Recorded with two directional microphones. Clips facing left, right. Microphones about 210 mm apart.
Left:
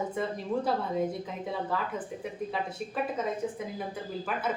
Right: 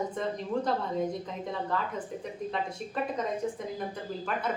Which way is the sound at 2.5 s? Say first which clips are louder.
Even; 5° left (ahead or behind).